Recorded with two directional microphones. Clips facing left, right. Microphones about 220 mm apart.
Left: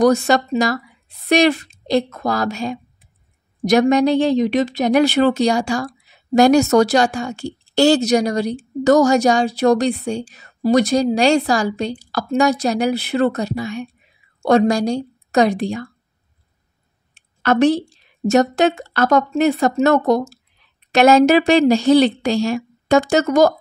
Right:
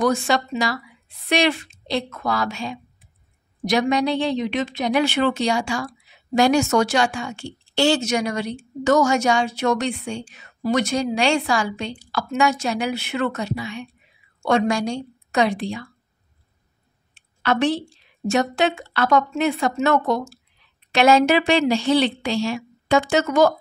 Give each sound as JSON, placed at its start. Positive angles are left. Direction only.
{"t": 0.0, "sound": "a woman's voice", "side_deg": 40}
{"t": 17.4, "sound": "a woman's voice", "side_deg": 45}